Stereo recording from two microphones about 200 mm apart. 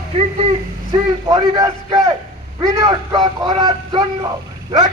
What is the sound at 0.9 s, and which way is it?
A man's voice, 20° right (ahead or behind).